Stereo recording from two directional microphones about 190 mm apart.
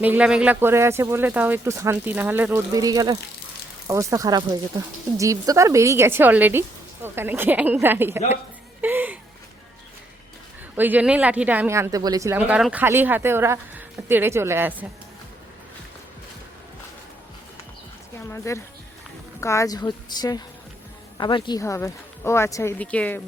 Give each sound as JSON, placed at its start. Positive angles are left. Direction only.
{"t": 0.0, "sound": "speech", "side_deg": -5}
{"t": 8.8, "sound": "laughter", "side_deg": -10}
{"t": 10.8, "sound": "speech", "side_deg": -10}
{"t": 18.3, "sound": "a woman's voice", "side_deg": 15}